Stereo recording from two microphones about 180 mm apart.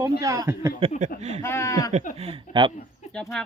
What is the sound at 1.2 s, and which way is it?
Speech, 35° right (ahead or behind).